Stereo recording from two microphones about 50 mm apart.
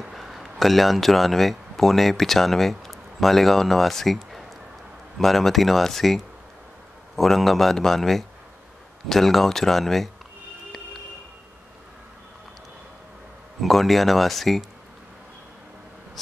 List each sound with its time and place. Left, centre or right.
0.0 s a man's voice: centre
13.6 s a man's voice: centre